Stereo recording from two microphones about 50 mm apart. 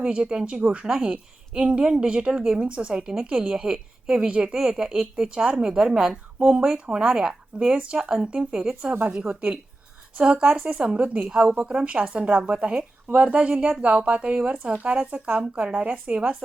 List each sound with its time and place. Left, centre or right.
0.0 s a woman's voice: centre
8.8 s speech: right
10.2 s a woman's voice: centre
11.3 s a woman's voice: centre